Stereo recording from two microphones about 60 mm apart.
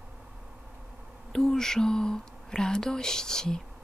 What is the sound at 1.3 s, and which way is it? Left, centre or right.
Speech, centre.